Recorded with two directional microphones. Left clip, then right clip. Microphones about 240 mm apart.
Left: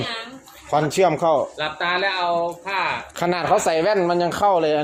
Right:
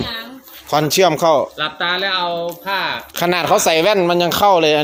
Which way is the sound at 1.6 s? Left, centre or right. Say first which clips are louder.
Right 3 dB; right.